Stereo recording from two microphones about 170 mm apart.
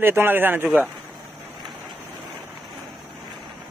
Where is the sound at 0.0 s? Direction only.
15° right (ahead or behind).